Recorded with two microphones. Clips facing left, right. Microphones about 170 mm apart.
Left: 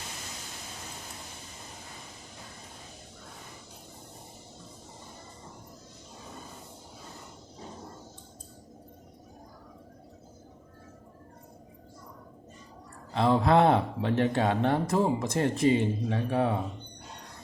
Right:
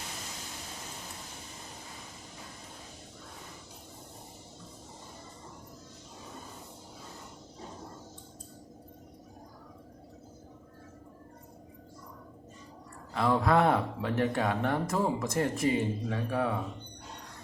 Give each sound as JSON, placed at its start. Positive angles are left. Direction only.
{"t": 13.1, "sound": "speech", "side_deg": 25}